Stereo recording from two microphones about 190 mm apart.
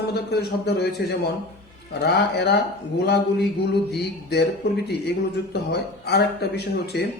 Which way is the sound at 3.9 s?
60° left (ahead or behind).